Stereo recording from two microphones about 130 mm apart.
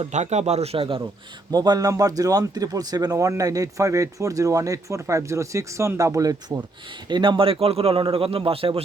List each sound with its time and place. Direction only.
0.1 s speech: 60° right (ahead or behind); by 1.0 s 45° right (ahead or behind)
1.5 s speech: 30° right (ahead or behind)
7.1 s a man's voice: 40° right (ahead or behind)